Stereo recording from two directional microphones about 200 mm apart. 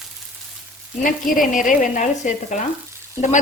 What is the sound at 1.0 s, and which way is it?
Speech, 45° left (ahead or behind).